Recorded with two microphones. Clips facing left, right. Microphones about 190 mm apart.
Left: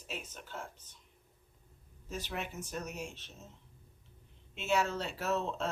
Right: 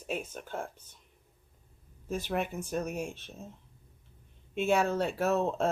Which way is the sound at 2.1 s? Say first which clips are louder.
Right 8 dB; 55° right (ahead or behind).